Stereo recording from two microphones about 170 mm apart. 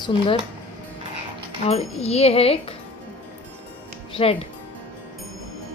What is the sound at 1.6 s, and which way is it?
Speech, 40° left (ahead or behind).